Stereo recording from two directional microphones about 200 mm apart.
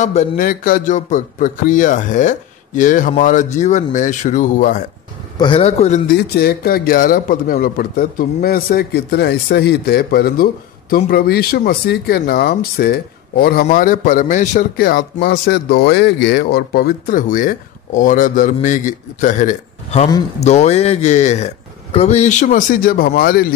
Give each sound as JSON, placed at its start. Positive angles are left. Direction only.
{"t": 0.0, "sound": "a man's voice", "side_deg": 35}
{"t": 5.4, "sound": "a man's voice", "side_deg": 25}
{"t": 6.1, "sound": "a man's voice", "side_deg": 55}